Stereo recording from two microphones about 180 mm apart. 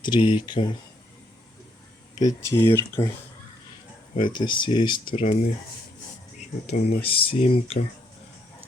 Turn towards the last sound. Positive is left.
turn(degrees=35)  # may be behind; listen again after turning